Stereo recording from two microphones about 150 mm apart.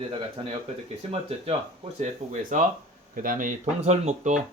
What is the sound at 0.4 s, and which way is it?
Speech, 35° right (ahead or behind).